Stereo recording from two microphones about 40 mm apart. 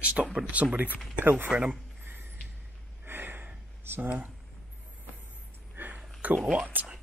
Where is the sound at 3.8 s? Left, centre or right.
Right.